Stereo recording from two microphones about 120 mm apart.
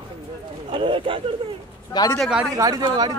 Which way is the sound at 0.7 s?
45° right (ahead or behind).